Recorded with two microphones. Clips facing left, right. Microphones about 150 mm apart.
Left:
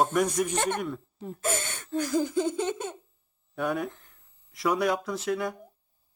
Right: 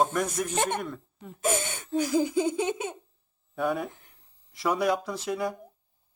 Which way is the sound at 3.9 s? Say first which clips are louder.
Even; 15° right (ahead or behind).